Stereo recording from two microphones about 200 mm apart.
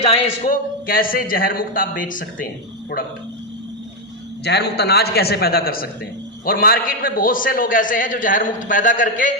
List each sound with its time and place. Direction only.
0.0 s a man's voice: 35° left (ahead or behind)
4.4 s a man's voice: 55° left (ahead or behind); by 9.3 s 40° left (ahead or behind)